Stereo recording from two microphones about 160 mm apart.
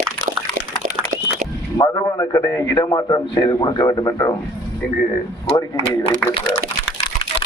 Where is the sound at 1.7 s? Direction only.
25° left (ahead or behind).